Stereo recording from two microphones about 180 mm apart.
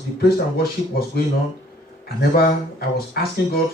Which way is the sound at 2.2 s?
60° left (ahead or behind).